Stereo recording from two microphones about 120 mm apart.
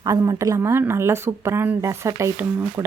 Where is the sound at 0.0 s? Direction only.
25° right (ahead or behind).